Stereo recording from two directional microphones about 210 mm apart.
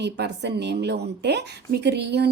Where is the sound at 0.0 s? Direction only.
50° right (ahead or behind).